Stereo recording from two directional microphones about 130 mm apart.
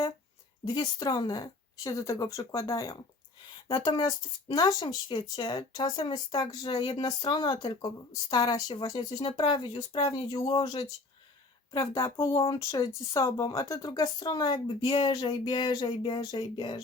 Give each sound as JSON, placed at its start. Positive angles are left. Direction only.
{"t": 0.6, "sound": "speech", "side_deg": 35}
{"t": 9.2, "sound": "a woman's voice", "side_deg": 45}
{"t": 12.5, "sound": "speech", "side_deg": 35}